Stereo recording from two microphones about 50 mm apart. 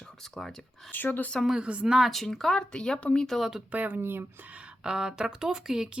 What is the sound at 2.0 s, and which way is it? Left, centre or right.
Speech, centre.